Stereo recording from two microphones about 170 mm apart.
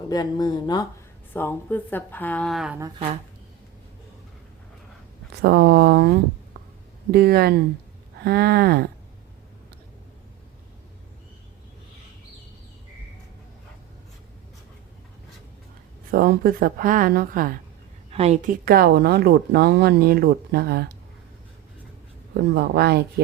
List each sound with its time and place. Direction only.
0.1 s speech: 25° left (ahead or behind)
1.3 s speech: 10° left (ahead or behind)
5.4 s speech: 70° right (ahead or behind)
7.1 s a woman's voice: 65° right (ahead or behind)
16.1 s a woman's voice: 60° right (ahead or behind)
18.1 s a woman's voice: 35° right (ahead or behind)
18.4 s speech: 60° right (ahead or behind)
22.4 s speech: 75° right (ahead or behind)